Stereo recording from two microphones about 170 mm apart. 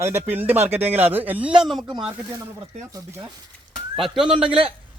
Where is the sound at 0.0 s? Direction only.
15° right (ahead or behind).